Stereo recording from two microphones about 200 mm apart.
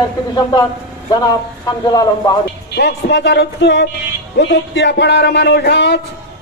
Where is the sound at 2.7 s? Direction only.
60° left (ahead or behind).